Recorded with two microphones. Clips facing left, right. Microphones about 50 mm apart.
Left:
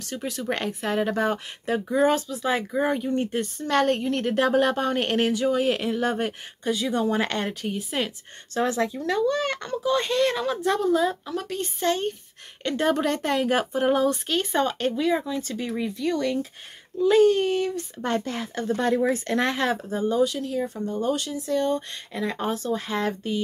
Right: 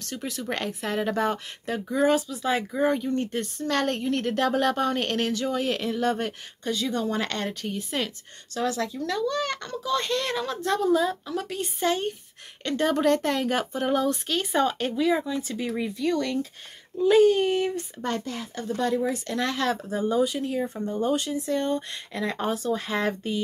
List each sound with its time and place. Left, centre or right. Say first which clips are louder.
0.0 s speech: left 2 dB; centre
8.5 s speech: left 3 dB; left; by 11.4 s centre
11.4 s speech: left 1 dB; centre
12.6 s speech: right 1 dB; centre
17.1 s speech: even; centre
18.2 s speech: left 4 dB; left
19.5 s speech: left 1 dB; centre
20.0 s speech: left 2 dB; centre
20.2 s speech: even; centre
22.1 s speech: even; centre